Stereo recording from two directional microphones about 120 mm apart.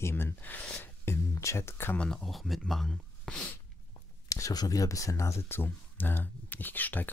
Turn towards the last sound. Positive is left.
turn(degrees=15)  # may be behind; listen again after turning